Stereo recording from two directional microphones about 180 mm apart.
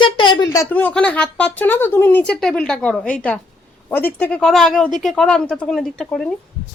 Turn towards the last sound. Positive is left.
turn(degrees=5)  # may be behind; listen again after turning